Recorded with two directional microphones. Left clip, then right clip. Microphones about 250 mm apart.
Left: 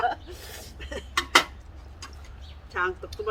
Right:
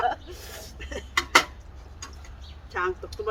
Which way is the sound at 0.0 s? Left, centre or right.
Centre.